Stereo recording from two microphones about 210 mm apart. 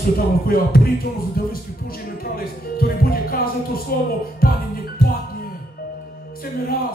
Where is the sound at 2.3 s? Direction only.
45° left (ahead or behind).